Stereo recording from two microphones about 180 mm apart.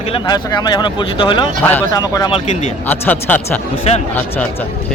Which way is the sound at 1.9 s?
20° left (ahead or behind).